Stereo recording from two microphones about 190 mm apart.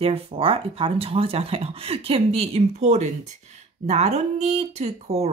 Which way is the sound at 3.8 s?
35° right (ahead or behind).